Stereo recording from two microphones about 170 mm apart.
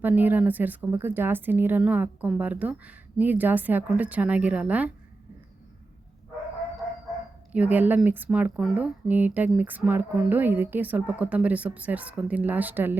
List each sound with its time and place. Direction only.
0.0 s speech: 10° right (ahead or behind)
7.5 s speech: 10° right (ahead or behind)